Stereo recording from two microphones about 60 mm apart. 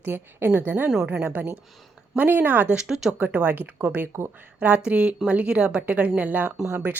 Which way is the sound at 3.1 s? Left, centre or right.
Right.